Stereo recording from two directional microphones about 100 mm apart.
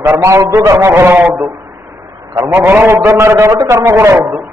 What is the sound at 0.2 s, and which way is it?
A man's voice, 30° right (ahead or behind).